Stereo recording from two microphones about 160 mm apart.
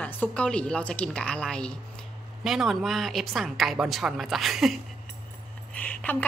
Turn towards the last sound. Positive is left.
turn(degrees=10)  # may be behind; listen again after turning